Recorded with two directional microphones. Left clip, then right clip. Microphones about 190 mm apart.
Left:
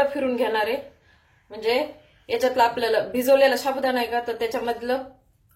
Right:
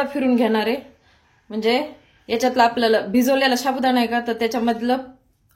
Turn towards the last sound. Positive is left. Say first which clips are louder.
# right 4 dB
turn(degrees=-50)  # may be behind; listen again after turning